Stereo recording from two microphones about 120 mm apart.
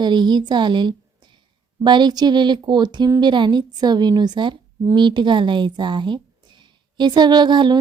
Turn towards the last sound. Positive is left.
turn(degrees=-40)  # may be behind; listen again after turning